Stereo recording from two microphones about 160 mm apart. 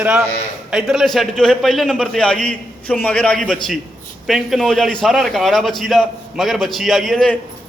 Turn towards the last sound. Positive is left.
turn(degrees=0)  # may be behind; listen again after turning